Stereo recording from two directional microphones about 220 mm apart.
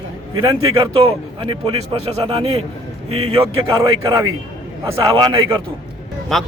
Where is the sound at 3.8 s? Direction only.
15° right (ahead or behind).